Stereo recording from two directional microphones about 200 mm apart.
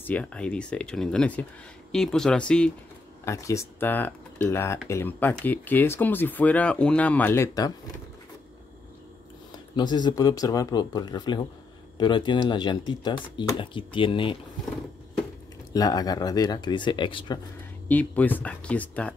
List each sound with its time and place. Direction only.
0.0 s speech: 5° left (ahead or behind)
9.5 s speech: 20° left (ahead or behind)
15.7 s speech: 20° left (ahead or behind)
17.8 s speech: 10° left (ahead or behind)